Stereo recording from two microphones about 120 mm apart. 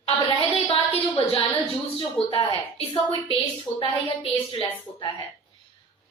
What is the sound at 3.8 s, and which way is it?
Speech, 50° left (ahead or behind).